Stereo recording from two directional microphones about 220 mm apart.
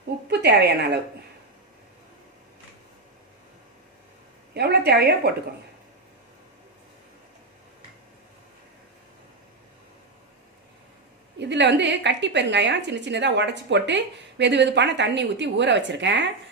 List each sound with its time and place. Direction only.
0.3 s a woman's voice: 50° right (ahead or behind)
4.5 s a woman's voice: 45° right (ahead or behind)
11.3 s a woman's voice: 50° right (ahead or behind)